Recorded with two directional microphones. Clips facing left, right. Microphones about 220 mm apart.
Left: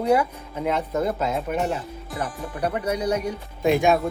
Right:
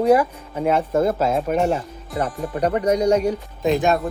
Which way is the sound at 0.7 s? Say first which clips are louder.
Right 5 dB; 50° right (ahead or behind).